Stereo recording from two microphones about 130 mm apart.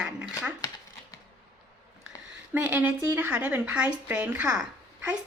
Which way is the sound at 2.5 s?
10° right (ahead or behind).